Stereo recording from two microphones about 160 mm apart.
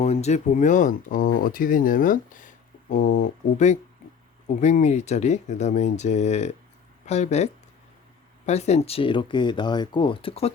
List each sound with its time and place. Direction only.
0.0 s speech: 45° left (ahead or behind)